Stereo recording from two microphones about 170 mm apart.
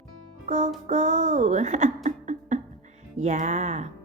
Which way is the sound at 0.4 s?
45° right (ahead or behind).